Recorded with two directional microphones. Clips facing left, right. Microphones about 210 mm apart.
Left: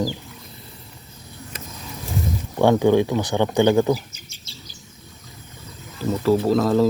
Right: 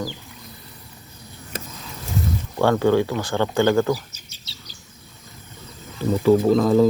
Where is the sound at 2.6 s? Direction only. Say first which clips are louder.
Left 2 dB; 15° left (ahead or behind).